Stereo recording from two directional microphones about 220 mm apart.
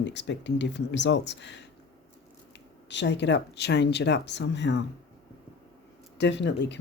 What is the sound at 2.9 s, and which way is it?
Speech, 50° left (ahead or behind).